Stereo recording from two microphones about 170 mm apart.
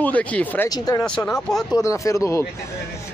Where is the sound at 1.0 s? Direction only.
5° left (ahead or behind).